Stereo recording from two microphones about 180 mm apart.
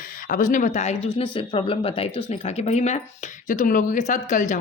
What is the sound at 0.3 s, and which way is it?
Speech, 45° left (ahead or behind).